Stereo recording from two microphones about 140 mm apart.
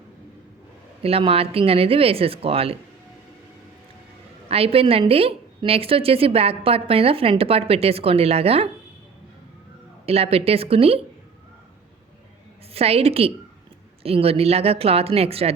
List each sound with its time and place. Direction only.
1.0 s a woman's voice: 45° right (ahead or behind)
4.4 s a woman's voice: 45° right (ahead or behind)
10.1 s a woman's voice: 45° right (ahead or behind)
12.7 s a woman's voice: 45° right (ahead or behind)